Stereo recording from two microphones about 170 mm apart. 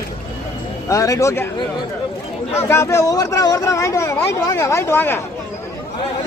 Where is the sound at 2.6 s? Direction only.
15° left (ahead or behind).